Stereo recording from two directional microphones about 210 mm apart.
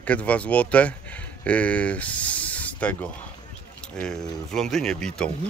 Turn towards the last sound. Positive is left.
turn(degrees=5)  # may be behind; listen again after turning